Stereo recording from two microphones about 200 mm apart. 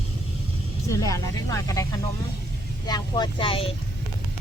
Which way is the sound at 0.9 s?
15° left (ahead or behind).